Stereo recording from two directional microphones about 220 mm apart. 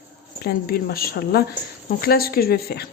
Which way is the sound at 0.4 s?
45° left (ahead or behind).